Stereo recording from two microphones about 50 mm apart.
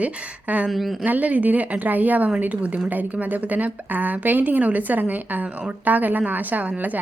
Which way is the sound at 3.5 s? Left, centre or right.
Right.